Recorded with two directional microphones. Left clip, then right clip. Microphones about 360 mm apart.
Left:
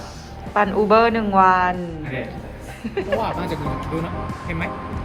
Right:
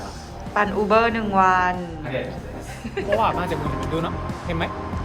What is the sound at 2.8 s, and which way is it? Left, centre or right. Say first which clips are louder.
Speech: right 2 dB; centre.